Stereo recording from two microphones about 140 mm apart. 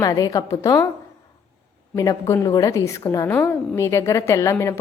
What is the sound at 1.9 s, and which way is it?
A woman's voice, 25° left (ahead or behind).